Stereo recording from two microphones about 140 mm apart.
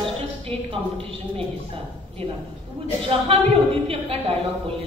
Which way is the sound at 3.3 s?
45° right (ahead or behind).